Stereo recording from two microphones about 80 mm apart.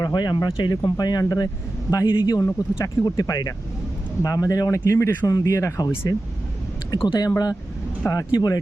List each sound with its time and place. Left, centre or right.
0.0 s speech: left
2.0 s speech: left
2.4 s speech: left
3.0 s speech: left